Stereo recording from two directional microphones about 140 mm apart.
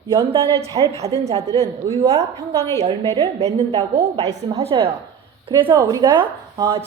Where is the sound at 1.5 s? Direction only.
25° right (ahead or behind).